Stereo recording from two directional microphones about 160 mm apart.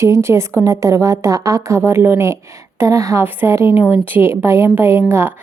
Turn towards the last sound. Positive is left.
turn(degrees=-15)  # may be behind; listen again after turning